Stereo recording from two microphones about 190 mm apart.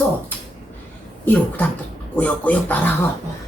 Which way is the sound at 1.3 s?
10° left (ahead or behind).